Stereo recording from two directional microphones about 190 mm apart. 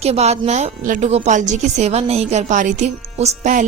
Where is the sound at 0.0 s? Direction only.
35° right (ahead or behind).